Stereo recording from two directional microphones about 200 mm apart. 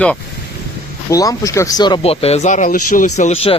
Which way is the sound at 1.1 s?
15° left (ahead or behind).